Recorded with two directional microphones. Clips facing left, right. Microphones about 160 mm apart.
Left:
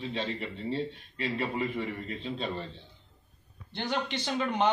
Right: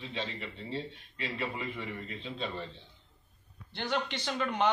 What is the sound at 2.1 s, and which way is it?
Speech, 40° left (ahead or behind).